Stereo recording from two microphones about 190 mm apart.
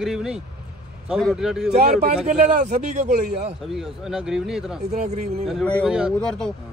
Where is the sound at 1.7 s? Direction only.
40° right (ahead or behind).